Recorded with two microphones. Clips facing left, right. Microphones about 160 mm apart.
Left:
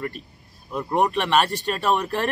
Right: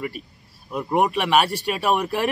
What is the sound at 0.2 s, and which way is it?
A man's voice, 5° right (ahead or behind).